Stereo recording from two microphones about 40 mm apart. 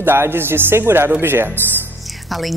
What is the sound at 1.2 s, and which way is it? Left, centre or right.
Speech, right.